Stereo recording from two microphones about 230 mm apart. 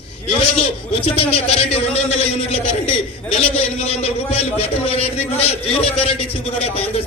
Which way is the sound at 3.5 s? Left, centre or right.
Left.